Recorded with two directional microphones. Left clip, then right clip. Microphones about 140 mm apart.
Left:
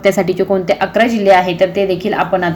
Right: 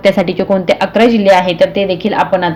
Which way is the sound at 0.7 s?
60° right (ahead or behind).